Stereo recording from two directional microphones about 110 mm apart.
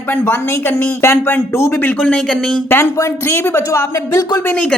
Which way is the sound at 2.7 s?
20° left (ahead or behind).